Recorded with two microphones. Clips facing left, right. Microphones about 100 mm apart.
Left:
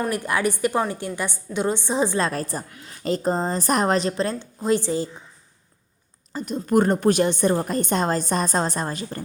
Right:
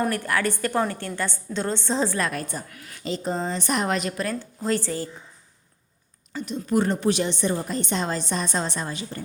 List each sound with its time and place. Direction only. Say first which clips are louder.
0.1 s a woman's voice: left 2 dB; 15° left (ahead or behind)
3.0 s a woman's voice: left 4 dB; 45° left (ahead or behind); by 5.0 s 20° left (ahead or behind)
6.3 s a woman's voice: left 3 dB; 45° left (ahead or behind)